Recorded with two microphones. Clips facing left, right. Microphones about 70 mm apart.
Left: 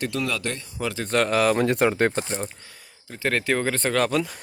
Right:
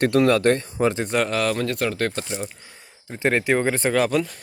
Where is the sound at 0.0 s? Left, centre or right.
Right.